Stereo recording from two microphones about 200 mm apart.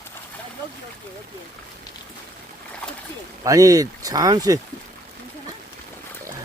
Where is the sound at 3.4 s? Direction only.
15° right (ahead or behind).